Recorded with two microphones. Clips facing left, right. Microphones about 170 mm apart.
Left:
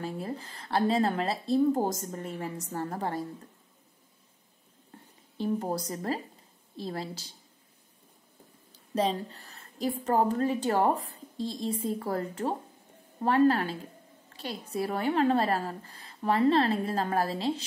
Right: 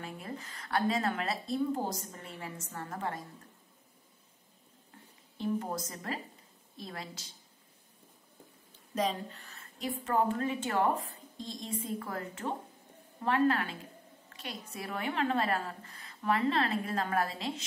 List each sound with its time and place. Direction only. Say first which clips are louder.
0.0 s a woman's voice: left 7 dB; 30° left (ahead or behind)
5.4 s a woman's voice: left 4 dB; 35° left (ahead or behind)
8.9 s a woman's voice: left 4 dB; 35° left (ahead or behind)